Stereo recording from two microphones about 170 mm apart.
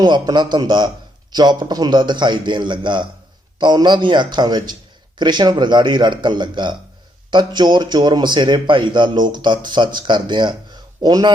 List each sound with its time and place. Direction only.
0.0 s speech: 25° right (ahead or behind)